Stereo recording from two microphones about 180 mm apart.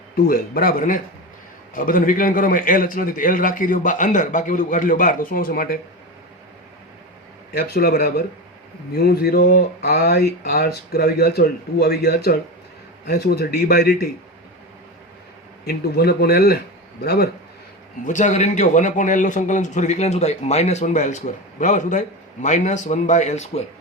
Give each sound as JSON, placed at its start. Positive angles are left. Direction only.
{"t": 0.3, "sound": "a man's voice", "side_deg": 55}
{"t": 7.5, "sound": "speech", "side_deg": 60}
{"t": 15.6, "sound": "speech", "side_deg": 60}
{"t": 18.0, "sound": "a man's voice", "side_deg": 45}